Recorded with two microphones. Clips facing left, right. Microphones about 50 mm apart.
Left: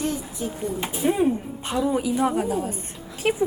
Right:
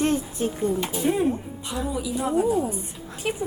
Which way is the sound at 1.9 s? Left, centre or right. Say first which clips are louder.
Left 3 dB; left.